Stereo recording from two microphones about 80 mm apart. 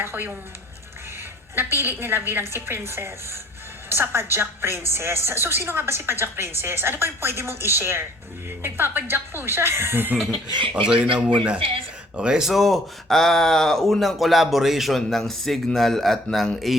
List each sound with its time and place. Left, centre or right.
0.0 s speech: right
1.5 s a woman's voice: right
10.3 s speech: right
10.8 s speech: centre
11.1 s speech: right
12.1 s speech: centre